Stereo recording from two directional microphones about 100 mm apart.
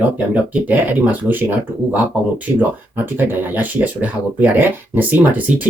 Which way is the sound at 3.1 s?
20° right (ahead or behind).